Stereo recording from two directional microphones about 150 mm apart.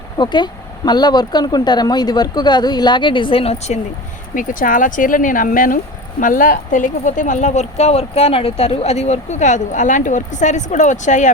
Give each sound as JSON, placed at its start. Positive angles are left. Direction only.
{"t": 0.2, "sound": "speech", "side_deg": 30}
{"t": 4.4, "sound": "speech", "side_deg": 60}